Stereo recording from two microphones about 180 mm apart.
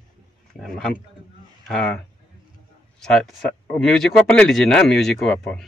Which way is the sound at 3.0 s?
5° left (ahead or behind).